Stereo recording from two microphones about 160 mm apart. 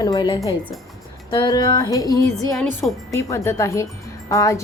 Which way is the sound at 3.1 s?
20° left (ahead or behind).